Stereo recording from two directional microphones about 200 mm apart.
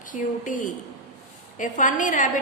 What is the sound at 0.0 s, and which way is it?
A woman's voice, 40° left (ahead or behind).